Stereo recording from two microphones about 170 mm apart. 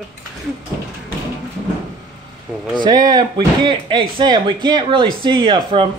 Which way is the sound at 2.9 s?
25° right (ahead or behind).